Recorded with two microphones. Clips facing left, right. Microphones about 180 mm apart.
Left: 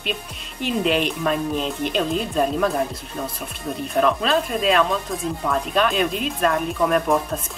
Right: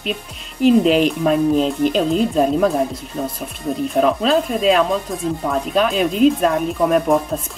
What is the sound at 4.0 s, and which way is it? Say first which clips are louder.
Speech: right 3 dB; 5° right (ahead or behind).